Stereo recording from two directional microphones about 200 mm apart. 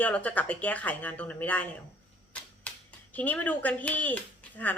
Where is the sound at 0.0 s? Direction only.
5° left (ahead or behind).